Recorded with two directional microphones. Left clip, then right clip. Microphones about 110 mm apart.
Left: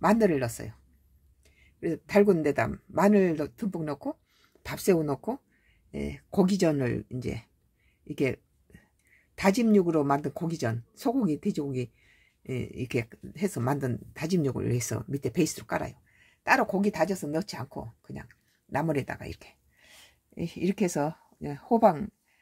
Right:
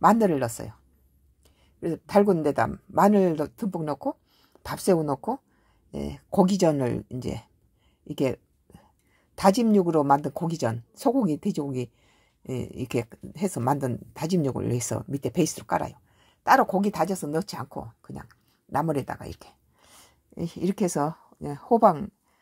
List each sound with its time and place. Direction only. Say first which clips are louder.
0.0 s speech: right 4 dB; 30° right (ahead or behind)
1.8 s speech: right 2 dB; 25° right (ahead or behind)
8.1 s a sound: right 2 dB; 25° right (ahead or behind)
9.3 s speech: right 3 dB; 25° right (ahead or behind)
18.7 s speech: right 3 dB; 15° right (ahead or behind)